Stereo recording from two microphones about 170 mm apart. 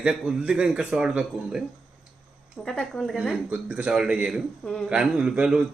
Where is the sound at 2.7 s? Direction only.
5° left (ahead or behind).